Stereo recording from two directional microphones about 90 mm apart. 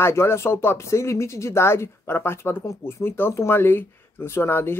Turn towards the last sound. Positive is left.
turn(degrees=25)  # may be behind; listen again after turning